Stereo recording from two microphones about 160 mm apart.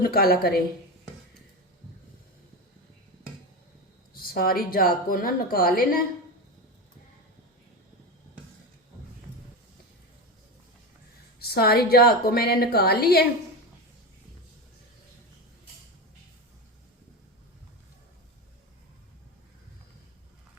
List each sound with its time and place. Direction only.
0.0 s a woman's voice: 65° left (ahead or behind)
4.1 s a woman's voice: 65° left (ahead or behind)
11.3 s a woman's voice: 75° left (ahead or behind)